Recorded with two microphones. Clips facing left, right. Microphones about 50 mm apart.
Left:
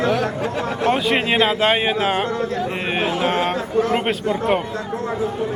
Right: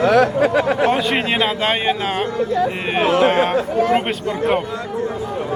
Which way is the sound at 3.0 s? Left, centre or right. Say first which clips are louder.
Right 8 dB; right.